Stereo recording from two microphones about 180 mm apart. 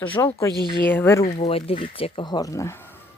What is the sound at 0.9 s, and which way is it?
Speech, 10° left (ahead or behind).